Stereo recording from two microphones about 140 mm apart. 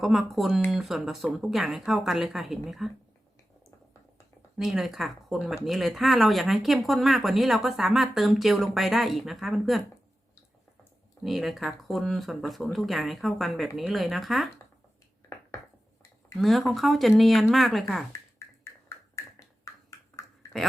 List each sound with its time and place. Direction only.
0.0 s speech: centre (ahead or behind)
4.5 s speech: 5° right (ahead or behind)
11.2 s speech: centre (ahead or behind)
16.4 s speech: centre (ahead or behind)
18.1 s beatboxing: 20° left (ahead or behind)